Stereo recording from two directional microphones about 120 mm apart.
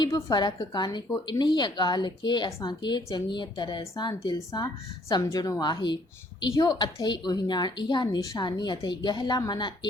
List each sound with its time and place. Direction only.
0.0 s a woman's voice: 35° left (ahead or behind)